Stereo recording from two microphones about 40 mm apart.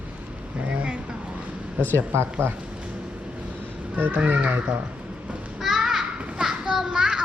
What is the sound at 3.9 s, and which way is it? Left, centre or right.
Speech, right.